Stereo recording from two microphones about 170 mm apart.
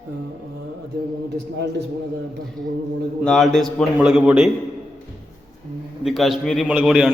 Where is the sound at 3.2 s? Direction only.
Centre (ahead or behind).